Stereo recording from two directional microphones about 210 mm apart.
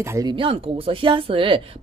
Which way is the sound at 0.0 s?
15° right (ahead or behind).